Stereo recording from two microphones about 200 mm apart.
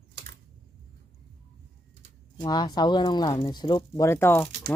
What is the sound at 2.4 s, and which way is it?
Speech, 20° left (ahead or behind).